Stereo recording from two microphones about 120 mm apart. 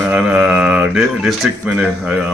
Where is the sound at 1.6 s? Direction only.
15° right (ahead or behind).